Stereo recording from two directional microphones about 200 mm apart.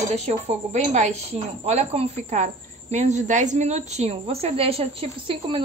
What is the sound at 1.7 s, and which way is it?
Speech, 35° right (ahead or behind).